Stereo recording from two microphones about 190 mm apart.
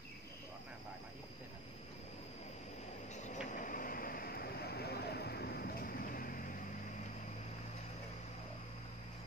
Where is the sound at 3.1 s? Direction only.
40° left (ahead or behind).